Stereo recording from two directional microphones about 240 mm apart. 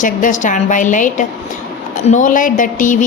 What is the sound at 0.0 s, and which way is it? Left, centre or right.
Speech, left.